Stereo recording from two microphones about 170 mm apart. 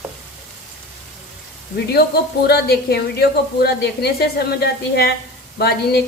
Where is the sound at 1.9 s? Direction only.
70° left (ahead or behind).